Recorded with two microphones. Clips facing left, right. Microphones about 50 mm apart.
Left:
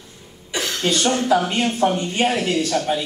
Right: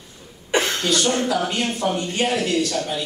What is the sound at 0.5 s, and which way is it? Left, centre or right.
Cough, right.